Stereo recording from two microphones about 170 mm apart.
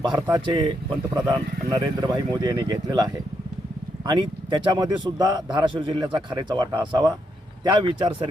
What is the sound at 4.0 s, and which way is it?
A man's voice, 25° right (ahead or behind).